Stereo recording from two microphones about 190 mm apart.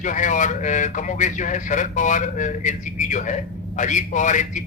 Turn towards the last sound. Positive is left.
turn(degrees=40)  # may be behind; listen again after turning